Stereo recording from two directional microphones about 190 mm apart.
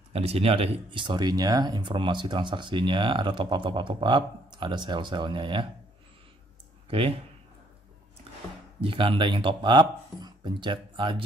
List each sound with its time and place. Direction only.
0.1 s speech: 30° right (ahead or behind)
6.9 s speech: 30° right (ahead or behind)
8.8 s speech: 25° right (ahead or behind)